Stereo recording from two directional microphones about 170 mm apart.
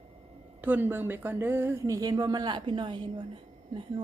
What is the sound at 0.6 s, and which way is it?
A woman's voice, 10° right (ahead or behind).